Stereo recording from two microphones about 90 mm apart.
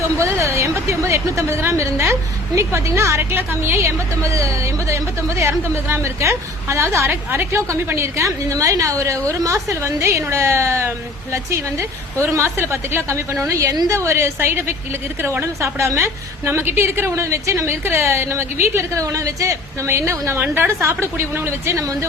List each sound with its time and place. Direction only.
0.2 s a woman's voice: 30° right (ahead or behind)